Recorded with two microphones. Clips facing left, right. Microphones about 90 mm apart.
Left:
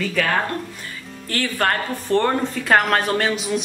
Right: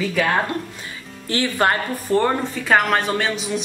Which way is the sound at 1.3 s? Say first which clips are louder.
Right 2 dB; 15° right (ahead or behind).